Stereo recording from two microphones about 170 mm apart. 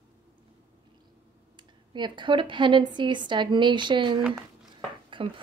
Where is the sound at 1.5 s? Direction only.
25° right (ahead or behind).